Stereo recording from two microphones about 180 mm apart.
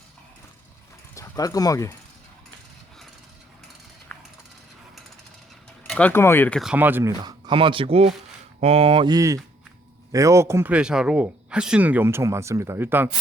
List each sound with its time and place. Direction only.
1.1 s speech: 20° left (ahead or behind)
4.1 s typing: 5° left (ahead or behind)
5.9 s speech: 10° left (ahead or behind)
6.6 s speech: 5° right (ahead or behind)
7.2 s speech: 25° right (ahead or behind)